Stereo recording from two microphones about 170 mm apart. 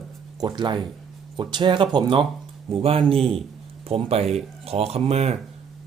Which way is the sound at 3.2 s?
Centre (ahead or behind).